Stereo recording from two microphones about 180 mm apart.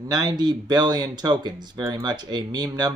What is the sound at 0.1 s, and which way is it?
Speech, 20° right (ahead or behind).